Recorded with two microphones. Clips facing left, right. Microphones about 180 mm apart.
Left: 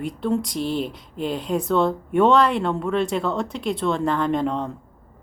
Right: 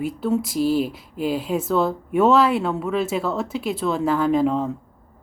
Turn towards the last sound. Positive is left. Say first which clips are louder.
# right 3 dB
turn(degrees=-5)  # may be behind; listen again after turning